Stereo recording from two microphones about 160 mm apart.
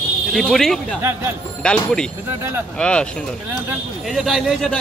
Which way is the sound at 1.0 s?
15° right (ahead or behind).